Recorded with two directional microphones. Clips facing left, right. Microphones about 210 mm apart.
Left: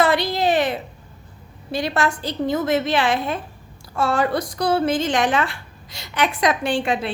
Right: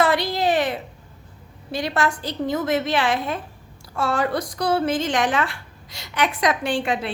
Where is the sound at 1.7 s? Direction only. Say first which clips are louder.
Left 1 dB; 30° left (ahead or behind).